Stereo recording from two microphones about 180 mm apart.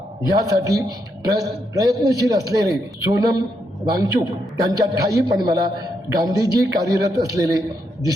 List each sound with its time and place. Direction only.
0.3 s a man's voice: 20° right (ahead or behind)